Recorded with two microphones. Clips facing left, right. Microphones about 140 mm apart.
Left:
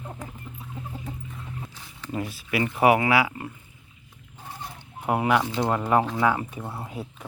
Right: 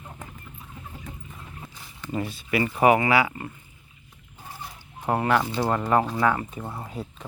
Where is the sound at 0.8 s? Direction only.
30° left (ahead or behind).